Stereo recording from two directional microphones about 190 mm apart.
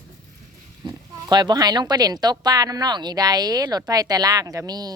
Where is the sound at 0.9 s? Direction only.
20° right (ahead or behind).